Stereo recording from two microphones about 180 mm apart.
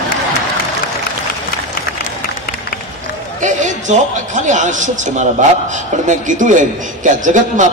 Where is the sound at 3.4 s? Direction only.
45° right (ahead or behind).